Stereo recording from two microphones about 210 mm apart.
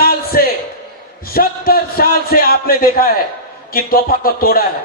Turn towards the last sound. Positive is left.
turn(degrees=45)  # may be behind; listen again after turning